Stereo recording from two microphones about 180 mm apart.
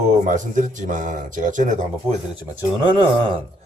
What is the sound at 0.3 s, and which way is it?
Speech, 45° right (ahead or behind).